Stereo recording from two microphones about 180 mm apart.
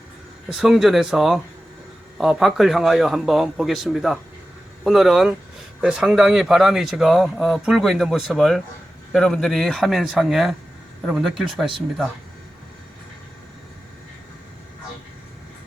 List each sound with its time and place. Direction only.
0.5 s speech: centre (ahead or behind)